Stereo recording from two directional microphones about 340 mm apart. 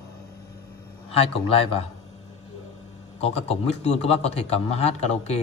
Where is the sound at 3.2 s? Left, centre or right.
Centre.